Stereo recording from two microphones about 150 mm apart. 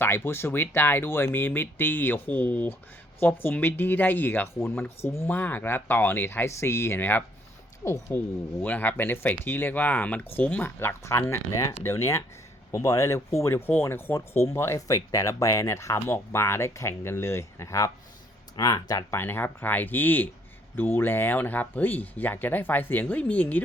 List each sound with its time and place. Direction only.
0.0 s speech: 15° left (ahead or behind)